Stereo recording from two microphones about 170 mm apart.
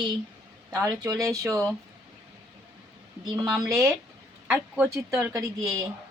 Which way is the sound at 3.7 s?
15° right (ahead or behind).